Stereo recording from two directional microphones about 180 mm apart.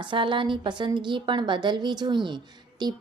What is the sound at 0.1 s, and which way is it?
A woman's voice, 25° right (ahead or behind).